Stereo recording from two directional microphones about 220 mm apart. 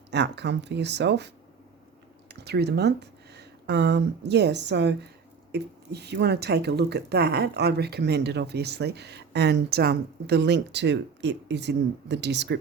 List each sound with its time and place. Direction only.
0.1 s speech: 50° right (ahead or behind)
2.3 s speech: 50° right (ahead or behind)